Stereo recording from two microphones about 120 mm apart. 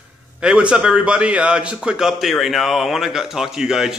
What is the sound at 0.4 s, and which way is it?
A man's voice, 5° right (ahead or behind).